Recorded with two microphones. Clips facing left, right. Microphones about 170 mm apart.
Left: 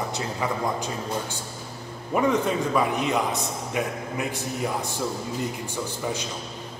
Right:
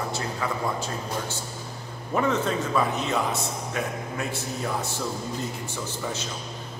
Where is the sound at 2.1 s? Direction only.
15° left (ahead or behind).